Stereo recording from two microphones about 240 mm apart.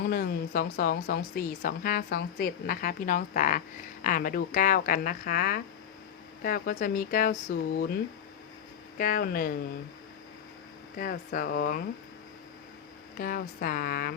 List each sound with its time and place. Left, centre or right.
0.1 s speech: left
10.9 s speech: left
13.1 s speech: left